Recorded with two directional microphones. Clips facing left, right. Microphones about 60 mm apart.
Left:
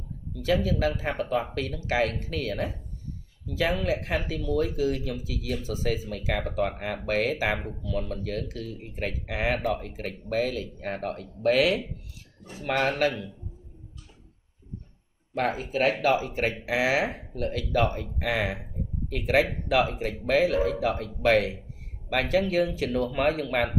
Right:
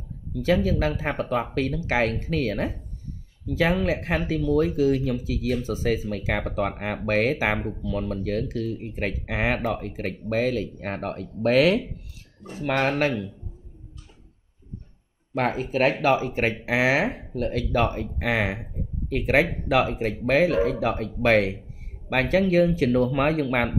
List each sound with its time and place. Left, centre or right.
0.5 s speech: right
15.3 s speech: right